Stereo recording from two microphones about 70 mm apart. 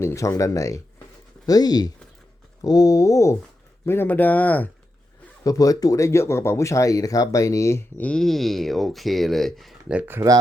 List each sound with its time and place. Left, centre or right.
0.0 s speech: left
1.5 s speech: left
2.6 s speech: left
3.8 s speech: left
5.4 s speech: left
8.1 s speech: centre
10.2 s speech: right